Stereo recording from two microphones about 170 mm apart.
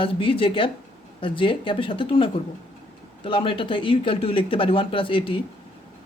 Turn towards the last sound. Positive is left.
turn(degrees=30)  # may be behind; listen again after turning